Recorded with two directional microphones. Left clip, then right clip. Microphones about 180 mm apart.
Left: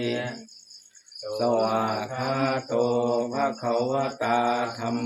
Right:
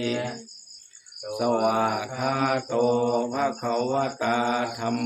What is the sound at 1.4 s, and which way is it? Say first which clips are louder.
Mantra: right 1 dB; 25° right (ahead or behind).